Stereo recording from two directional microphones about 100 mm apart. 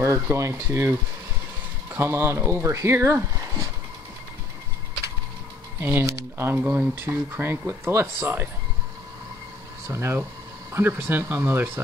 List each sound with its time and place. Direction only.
0.0 s speech: 30° right (ahead or behind)
2.0 s speech: 25° right (ahead or behind)
5.8 s speech: 20° right (ahead or behind)
9.8 s speech: 25° right (ahead or behind)